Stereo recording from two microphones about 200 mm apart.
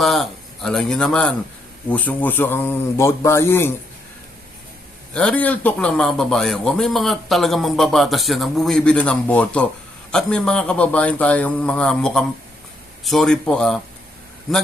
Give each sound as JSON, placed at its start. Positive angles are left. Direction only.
{"t": 0.0, "sound": "a man's voice", "side_deg": 0}
{"t": 5.1, "sound": "a man's voice", "side_deg": 5}